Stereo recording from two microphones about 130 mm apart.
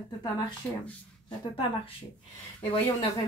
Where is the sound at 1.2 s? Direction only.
45° left (ahead or behind).